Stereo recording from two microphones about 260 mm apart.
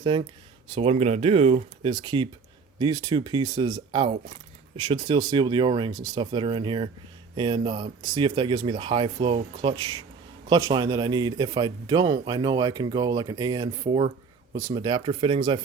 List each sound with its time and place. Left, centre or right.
0.0 s a man's voice: right